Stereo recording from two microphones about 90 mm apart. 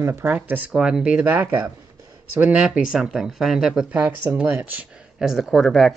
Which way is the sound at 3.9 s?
20° right (ahead or behind).